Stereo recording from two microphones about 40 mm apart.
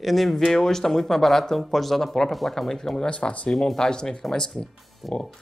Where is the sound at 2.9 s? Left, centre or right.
Left.